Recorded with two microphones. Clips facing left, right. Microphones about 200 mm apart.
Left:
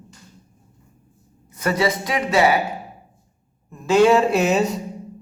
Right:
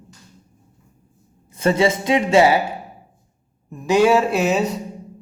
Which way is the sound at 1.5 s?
25° right (ahead or behind).